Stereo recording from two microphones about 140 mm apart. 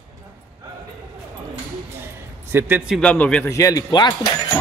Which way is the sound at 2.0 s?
15° right (ahead or behind).